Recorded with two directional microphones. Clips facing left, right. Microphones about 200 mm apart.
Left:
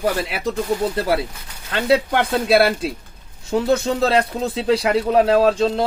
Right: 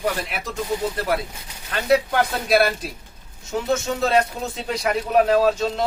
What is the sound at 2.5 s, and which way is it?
Speech, 25° left (ahead or behind).